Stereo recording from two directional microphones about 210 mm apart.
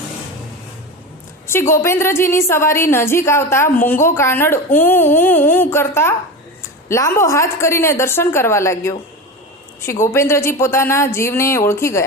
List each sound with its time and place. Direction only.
1.5 s a woman's voice: 10° left (ahead or behind)